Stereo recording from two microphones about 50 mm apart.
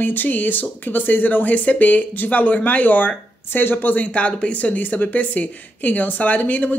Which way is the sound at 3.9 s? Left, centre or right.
Left.